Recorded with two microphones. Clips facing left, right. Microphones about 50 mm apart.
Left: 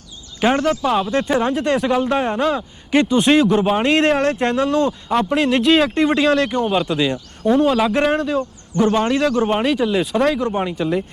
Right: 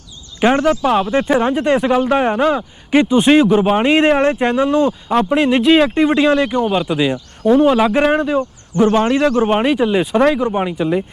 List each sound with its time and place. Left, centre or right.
0.3 s speech: centre
8.4 s speech: right